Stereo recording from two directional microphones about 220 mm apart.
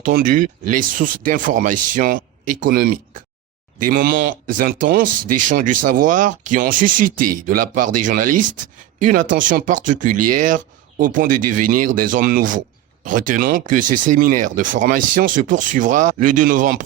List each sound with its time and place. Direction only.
0.0 s speech: 40° right (ahead or behind)